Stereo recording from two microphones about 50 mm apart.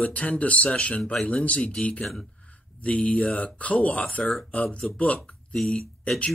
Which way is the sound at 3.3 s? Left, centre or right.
Left.